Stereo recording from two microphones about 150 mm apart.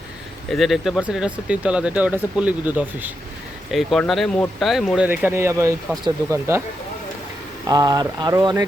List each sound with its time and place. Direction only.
0.5 s speech: centre (ahead or behind)
3.7 s speech: centre (ahead or behind)
5.0 s speech: 10° right (ahead or behind)
7.7 s speech: 25° right (ahead or behind)